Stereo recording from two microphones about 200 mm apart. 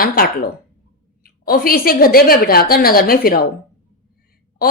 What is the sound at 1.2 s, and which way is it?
A woman's voice, 50° left (ahead or behind).